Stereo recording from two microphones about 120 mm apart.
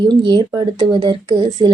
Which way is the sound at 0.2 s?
40° right (ahead or behind).